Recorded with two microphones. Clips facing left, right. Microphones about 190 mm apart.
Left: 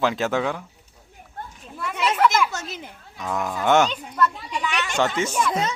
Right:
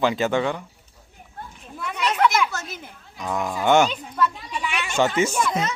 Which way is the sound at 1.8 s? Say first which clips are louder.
Left 1 dB; centre (ahead or behind).